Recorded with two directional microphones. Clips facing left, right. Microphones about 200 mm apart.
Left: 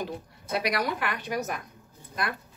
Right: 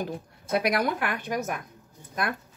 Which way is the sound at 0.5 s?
50° right (ahead or behind).